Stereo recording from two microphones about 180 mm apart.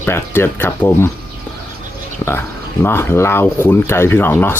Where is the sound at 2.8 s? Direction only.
10° left (ahead or behind).